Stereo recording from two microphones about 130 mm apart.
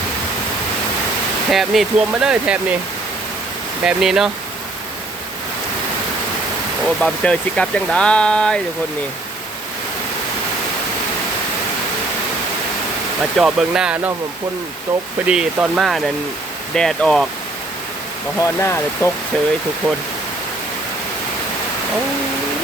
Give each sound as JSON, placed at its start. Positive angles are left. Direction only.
{"t": 1.5, "sound": "speech", "side_deg": 0}
{"t": 3.8, "sound": "speech", "side_deg": -5}
{"t": 6.8, "sound": "speech", "side_deg": 10}
{"t": 13.3, "sound": "speech", "side_deg": -5}
{"t": 15.3, "sound": "speech", "side_deg": -10}
{"t": 18.3, "sound": "speech", "side_deg": 25}